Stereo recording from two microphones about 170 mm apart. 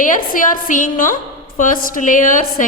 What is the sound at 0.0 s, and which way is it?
A woman's voice, 50° left (ahead or behind).